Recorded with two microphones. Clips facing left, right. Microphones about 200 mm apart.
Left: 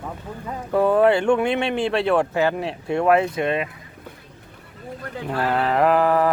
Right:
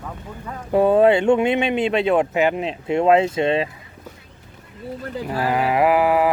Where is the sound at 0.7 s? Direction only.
25° right (ahead or behind).